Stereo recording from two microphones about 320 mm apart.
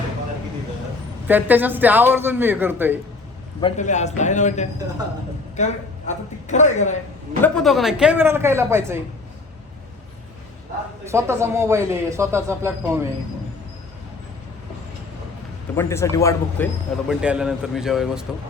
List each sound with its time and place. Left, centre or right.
1.3 s speech: centre
3.6 s a woman's voice: left
7.4 s speech: centre
11.0 s speech: centre
15.7 s speech: centre
17.1 s speech: centre